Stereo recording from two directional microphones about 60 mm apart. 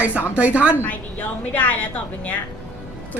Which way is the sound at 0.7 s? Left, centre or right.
Left.